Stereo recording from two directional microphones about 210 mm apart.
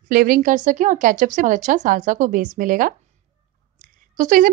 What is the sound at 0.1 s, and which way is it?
A woman's voice, 45° right (ahead or behind).